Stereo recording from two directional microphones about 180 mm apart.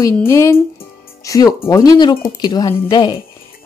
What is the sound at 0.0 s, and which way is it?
Speech, 15° left (ahead or behind).